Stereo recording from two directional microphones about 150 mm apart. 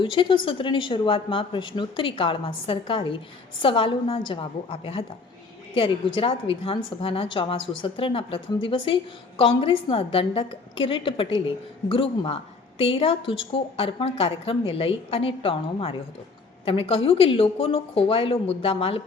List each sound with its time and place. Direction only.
0.0 s a woman's voice: 35° left (ahead or behind)